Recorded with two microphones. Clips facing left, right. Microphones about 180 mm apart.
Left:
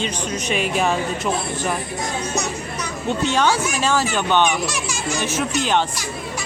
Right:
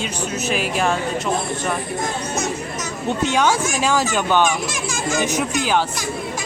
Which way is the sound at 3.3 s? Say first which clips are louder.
Even; 10° right (ahead or behind).